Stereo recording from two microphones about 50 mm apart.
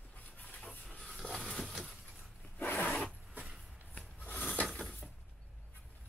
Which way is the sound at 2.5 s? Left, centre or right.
Left.